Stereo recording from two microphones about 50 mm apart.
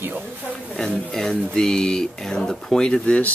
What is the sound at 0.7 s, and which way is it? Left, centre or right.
Speech, centre.